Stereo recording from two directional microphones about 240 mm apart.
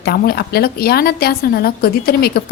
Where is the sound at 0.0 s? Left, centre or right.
Left.